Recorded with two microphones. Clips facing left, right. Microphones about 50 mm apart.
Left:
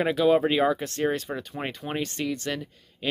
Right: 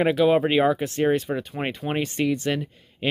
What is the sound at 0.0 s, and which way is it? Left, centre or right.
Speech, right.